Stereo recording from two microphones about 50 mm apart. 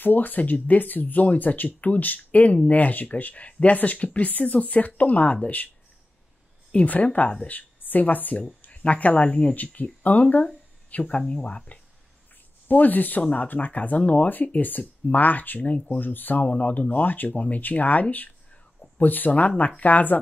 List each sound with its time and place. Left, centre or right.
0.0 s speech: left
6.7 s speech: left
12.6 s speech: left